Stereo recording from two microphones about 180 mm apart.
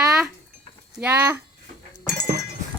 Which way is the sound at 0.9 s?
10° right (ahead or behind).